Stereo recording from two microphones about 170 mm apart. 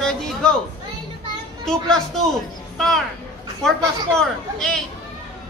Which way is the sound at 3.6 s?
5° left (ahead or behind).